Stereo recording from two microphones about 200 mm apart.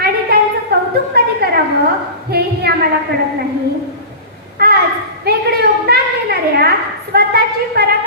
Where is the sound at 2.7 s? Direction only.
55° right (ahead or behind).